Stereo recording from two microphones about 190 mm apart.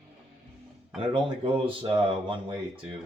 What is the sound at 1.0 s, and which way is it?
Speech, 25° right (ahead or behind).